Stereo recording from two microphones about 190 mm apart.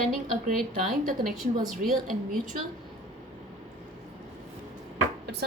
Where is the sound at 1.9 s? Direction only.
Centre (ahead or behind).